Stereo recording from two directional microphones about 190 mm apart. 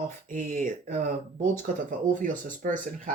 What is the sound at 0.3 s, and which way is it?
Speech, 45° right (ahead or behind).